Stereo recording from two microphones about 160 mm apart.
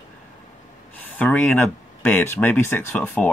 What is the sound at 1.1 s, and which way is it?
Speech, 10° left (ahead or behind).